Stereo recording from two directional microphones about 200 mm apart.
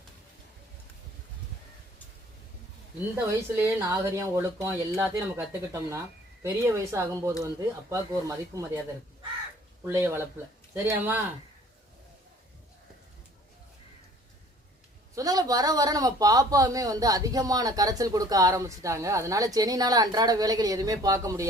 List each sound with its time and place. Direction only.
3.2 s speech: 15° right (ahead or behind)
9.8 s speech: 10° right (ahead or behind)
15.1 s speech: 15° right (ahead or behind)